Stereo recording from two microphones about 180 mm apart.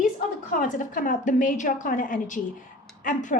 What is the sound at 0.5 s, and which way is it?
A woman's voice, 50° left (ahead or behind).